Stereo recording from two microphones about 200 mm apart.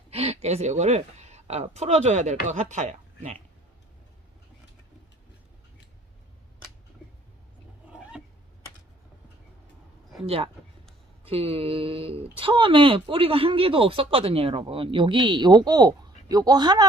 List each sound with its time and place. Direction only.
0.1 s a woman's voice: 30° right (ahead or behind)
7.9 s a sound: 5° right (ahead or behind)
10.2 s speech: 30° right (ahead or behind)